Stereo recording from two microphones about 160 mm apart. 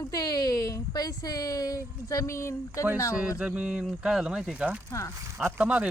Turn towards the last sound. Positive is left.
turn(degrees=-5)  # may be behind; listen again after turning